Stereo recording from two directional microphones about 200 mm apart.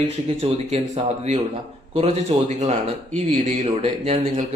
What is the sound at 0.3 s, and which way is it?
Speech, 30° right (ahead or behind).